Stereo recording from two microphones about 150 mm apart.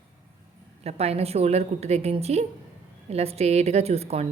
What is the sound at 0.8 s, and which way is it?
A woman's voice, 45° right (ahead or behind).